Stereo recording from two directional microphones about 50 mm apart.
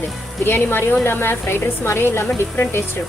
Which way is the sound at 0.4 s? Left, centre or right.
Left.